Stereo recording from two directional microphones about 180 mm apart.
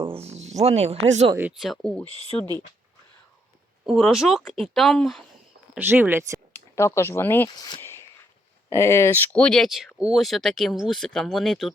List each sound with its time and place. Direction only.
0.0 s speech: 35° right (ahead or behind)
1.4 s speech: 5° right (ahead or behind)
2.0 s speech: 35° left (ahead or behind)
3.8 s speech: centre (ahead or behind)
5.7 s speech: 10° right (ahead or behind)
6.5 s speech: 15° left (ahead or behind)